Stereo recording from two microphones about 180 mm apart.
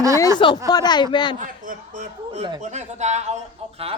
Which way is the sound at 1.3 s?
45° right (ahead or behind).